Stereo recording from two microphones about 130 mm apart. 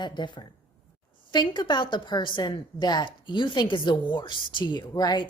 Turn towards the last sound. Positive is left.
turn(degrees=35)  # may be behind; listen again after turning